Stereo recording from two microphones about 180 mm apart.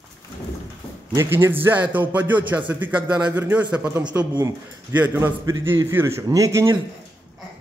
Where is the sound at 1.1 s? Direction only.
15° right (ahead or behind).